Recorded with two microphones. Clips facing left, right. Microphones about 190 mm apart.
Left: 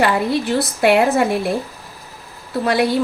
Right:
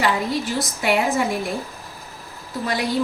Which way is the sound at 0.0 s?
65° left (ahead or behind).